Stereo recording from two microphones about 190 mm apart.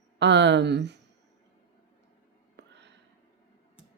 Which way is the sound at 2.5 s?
65° right (ahead or behind).